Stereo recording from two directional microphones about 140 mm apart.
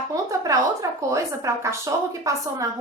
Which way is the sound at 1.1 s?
20° right (ahead or behind).